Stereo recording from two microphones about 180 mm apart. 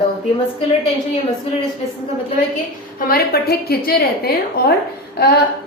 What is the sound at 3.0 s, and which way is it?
Speech, 55° left (ahead or behind).